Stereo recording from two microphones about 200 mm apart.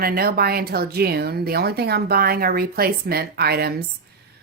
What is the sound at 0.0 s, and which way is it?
A woman's voice, 50° right (ahead or behind).